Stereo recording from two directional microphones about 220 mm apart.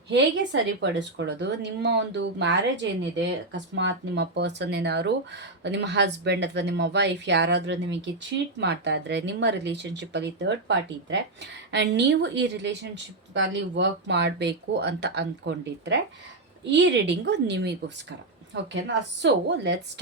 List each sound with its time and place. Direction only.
0.1 s a woman's voice: 55° right (ahead or behind)